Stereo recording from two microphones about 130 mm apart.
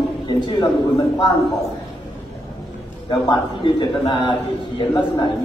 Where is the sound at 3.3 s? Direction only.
35° left (ahead or behind).